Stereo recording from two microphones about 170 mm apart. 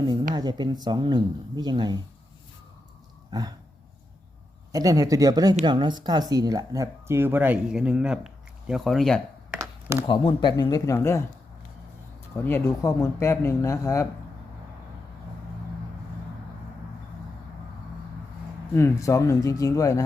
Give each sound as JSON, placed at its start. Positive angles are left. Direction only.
{"t": 0.0, "sound": "a sound", "side_deg": -25}
{"t": 0.3, "sound": "speech", "side_deg": -25}
{"t": 3.3, "sound": "speech", "side_deg": -25}
{"t": 4.7, "sound": "speech", "side_deg": -20}
{"t": 10.1, "sound": "speech", "side_deg": 30}
{"t": 12.5, "sound": "speech", "side_deg": 15}
{"t": 18.7, "sound": "speech", "side_deg": 15}